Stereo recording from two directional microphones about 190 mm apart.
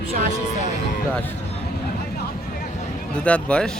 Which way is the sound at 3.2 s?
5° left (ahead or behind).